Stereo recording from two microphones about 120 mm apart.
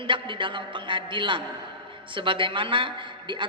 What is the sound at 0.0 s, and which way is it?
A woman's voice, 45° right (ahead or behind).